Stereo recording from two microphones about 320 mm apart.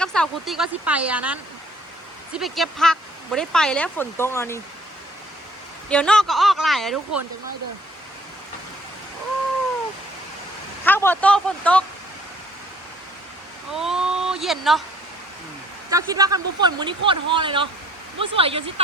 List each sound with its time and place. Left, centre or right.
0.0 s speech: centre
5.9 s speech: centre
10.8 s speech: centre
13.7 s a sound: centre
15.9 s speech: centre